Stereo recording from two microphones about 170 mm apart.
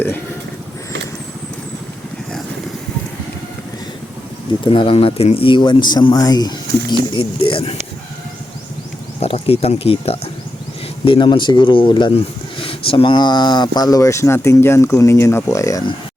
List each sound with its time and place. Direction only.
4.6 s speech: 30° left (ahead or behind)
9.2 s speech: 35° left (ahead or behind); by 16.0 s 20° left (ahead or behind)